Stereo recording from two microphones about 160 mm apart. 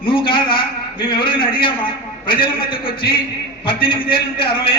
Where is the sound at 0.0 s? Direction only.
30° left (ahead or behind).